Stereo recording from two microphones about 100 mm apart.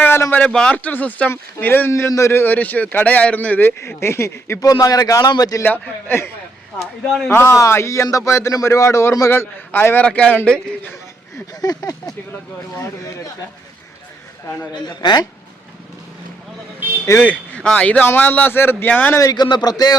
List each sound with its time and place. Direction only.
0.0 s a man's voice: 20° left (ahead or behind)
1.9 s a man's voice: 30° left (ahead or behind)
3.8 s a man's voice: 25° left (ahead or behind)
4.7 s speech: 40° left (ahead or behind)
5.6 s a man's voice: 20° left (ahead or behind)
7.5 s a man's voice: 30° left (ahead or behind); by 10.9 s 15° left (ahead or behind)
11.6 s speech: 40° left (ahead or behind)
14.8 s speech: 45° left (ahead or behind)
17.2 s a man's voice: 15° left (ahead or behind)
19.1 s speech: 40° left (ahead or behind)